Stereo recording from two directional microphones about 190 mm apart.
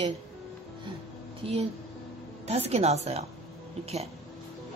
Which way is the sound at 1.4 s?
30° right (ahead or behind).